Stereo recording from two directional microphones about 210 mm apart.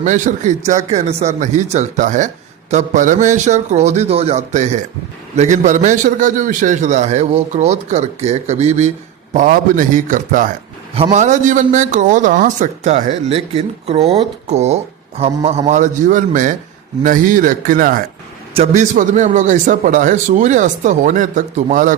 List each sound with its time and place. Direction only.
0.0 s speech: 35° right (ahead or behind)